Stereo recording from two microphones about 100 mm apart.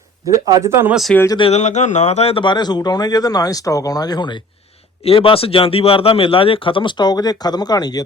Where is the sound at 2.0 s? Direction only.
90° left.